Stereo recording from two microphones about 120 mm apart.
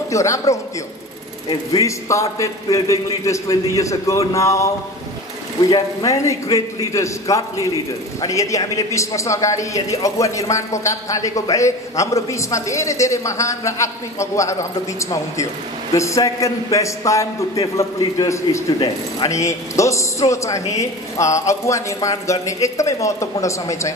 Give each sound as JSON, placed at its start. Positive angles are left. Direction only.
{"t": 0.1, "sound": "a man's voice", "side_deg": 25}
{"t": 5.7, "sound": "a man's voice", "side_deg": 25}